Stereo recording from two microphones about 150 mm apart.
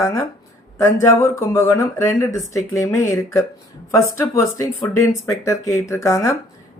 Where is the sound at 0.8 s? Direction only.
20° left (ahead or behind).